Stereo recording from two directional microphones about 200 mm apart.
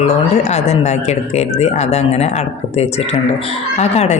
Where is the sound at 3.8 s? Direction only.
30° left (ahead or behind).